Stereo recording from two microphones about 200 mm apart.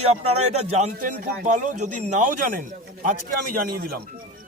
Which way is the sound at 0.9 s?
45° right (ahead or behind).